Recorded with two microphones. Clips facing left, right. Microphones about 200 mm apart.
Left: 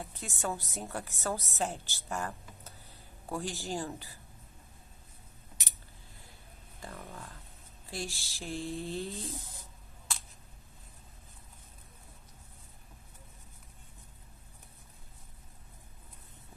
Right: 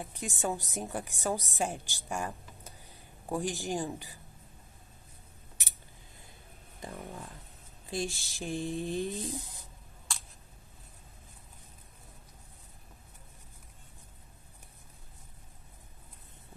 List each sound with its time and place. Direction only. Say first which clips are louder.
0.0 s a woman's voice: right 3 dB; 15° right (ahead or behind)
6.8 s a woman's voice: right 3 dB; 15° right (ahead or behind)